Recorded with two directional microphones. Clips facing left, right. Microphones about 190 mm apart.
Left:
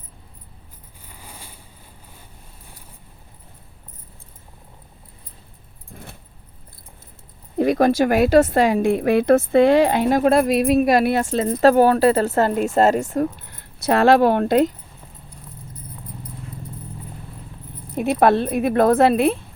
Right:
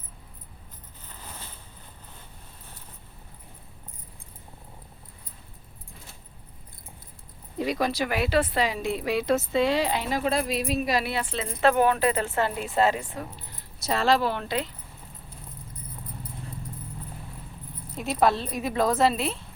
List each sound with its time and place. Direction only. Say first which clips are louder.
1.0 s a sound: left 1 dB; 10° left (ahead or behind)
7.6 s a woman's voice: left 10 dB; 50° left (ahead or behind)
13.4 s speech: left 11 dB; 60° left (ahead or behind)
17.9 s speech: left 7 dB; 60° left (ahead or behind)